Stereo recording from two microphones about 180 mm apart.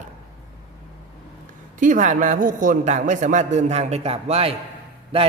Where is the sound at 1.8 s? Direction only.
45° right (ahead or behind).